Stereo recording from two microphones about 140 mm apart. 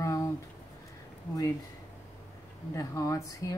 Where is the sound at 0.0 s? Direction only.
25° left (ahead or behind).